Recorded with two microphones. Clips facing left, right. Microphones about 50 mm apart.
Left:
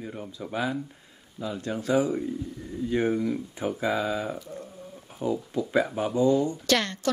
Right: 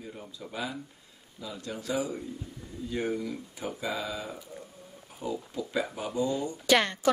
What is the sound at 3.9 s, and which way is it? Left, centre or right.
Speech, centre.